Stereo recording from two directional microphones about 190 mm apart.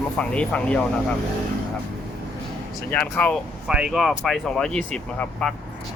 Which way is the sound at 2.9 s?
10° left (ahead or behind).